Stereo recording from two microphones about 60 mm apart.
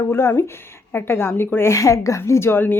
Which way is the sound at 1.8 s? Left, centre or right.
Left.